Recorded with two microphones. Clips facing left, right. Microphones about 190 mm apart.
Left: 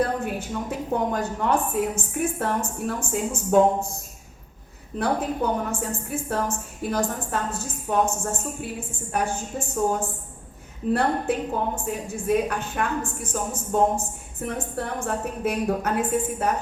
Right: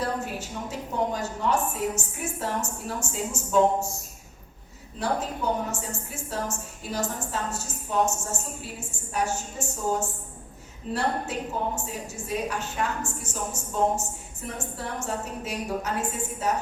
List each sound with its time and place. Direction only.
0.0 s a woman's voice: 55° left (ahead or behind)
4.9 s a woman's voice: 55° left (ahead or behind)